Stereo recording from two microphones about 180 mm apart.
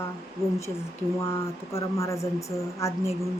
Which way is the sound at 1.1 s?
15° left (ahead or behind).